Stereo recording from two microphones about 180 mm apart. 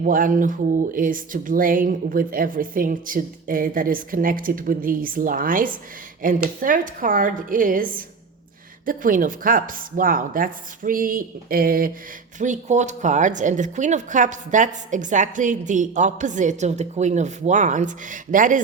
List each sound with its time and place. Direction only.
0.0 s speech: 50° right (ahead or behind)
12.4 s speech: 40° right (ahead or behind)